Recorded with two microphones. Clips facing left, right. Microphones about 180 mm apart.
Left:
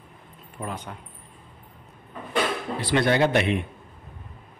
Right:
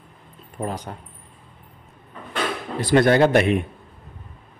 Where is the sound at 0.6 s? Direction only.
35° right (ahead or behind).